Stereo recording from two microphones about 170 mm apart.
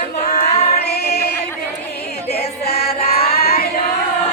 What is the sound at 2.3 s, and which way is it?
Music, 70° left (ahead or behind).